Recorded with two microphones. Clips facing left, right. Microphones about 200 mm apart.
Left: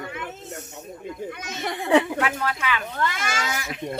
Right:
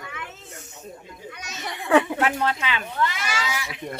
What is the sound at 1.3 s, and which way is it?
Speech, 50° left (ahead or behind).